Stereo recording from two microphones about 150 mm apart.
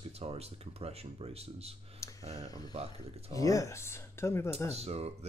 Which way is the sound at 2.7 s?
45° right (ahead or behind).